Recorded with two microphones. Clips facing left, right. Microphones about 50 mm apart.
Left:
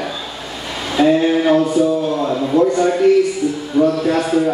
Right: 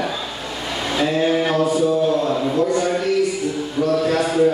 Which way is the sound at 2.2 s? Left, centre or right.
Left.